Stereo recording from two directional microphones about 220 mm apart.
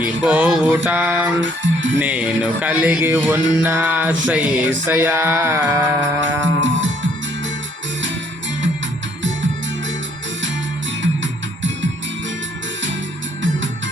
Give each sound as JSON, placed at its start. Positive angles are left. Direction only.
{"t": 0.0, "sound": "music", "side_deg": -5}
{"t": 1.4, "sound": "speech", "side_deg": -60}
{"t": 2.0, "sound": "music", "side_deg": -5}
{"t": 6.1, "sound": "music", "side_deg": -55}
{"t": 11.0, "sound": "music", "side_deg": -55}